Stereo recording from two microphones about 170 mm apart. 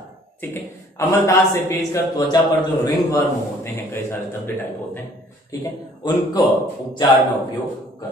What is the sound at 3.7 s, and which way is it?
A man's voice, 15° left (ahead or behind).